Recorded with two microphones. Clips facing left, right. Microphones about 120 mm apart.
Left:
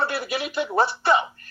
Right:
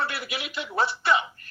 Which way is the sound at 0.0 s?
35° left (ahead or behind).